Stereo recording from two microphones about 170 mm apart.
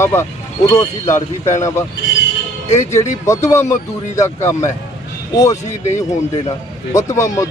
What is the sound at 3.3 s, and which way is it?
Speech, 15° left (ahead or behind).